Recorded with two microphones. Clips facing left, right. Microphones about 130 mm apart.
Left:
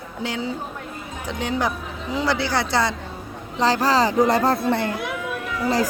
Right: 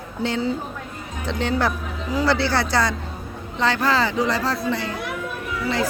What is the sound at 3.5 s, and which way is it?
Speech, 35° left (ahead or behind).